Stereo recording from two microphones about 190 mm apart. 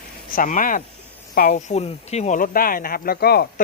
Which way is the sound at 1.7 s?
35° left (ahead or behind).